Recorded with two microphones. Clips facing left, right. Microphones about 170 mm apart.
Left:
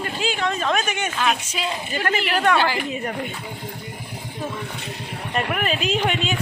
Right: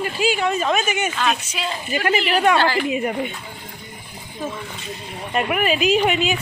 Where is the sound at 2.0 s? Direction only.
15° right (ahead or behind).